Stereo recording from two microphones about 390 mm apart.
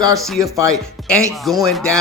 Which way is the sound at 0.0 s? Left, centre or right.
Centre.